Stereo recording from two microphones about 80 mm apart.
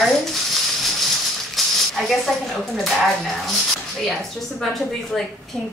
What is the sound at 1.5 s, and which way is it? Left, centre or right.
Speech, centre.